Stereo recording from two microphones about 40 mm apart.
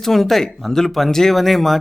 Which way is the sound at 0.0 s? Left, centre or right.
Centre.